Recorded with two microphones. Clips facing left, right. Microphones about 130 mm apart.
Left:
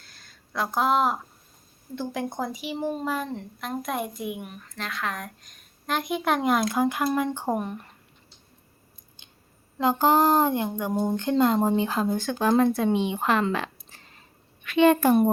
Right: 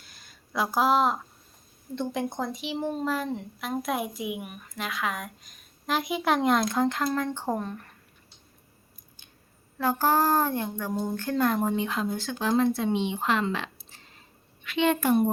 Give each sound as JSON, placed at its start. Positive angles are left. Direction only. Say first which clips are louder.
{"t": 0.0, "sound": "a sound", "louder": "even", "side_deg": -10}
{"t": 2.0, "sound": "a woman's voice", "louder": "even", "side_deg": 5}
{"t": 9.7, "sound": "a child's voice", "louder": "left 3 dB", "side_deg": 20}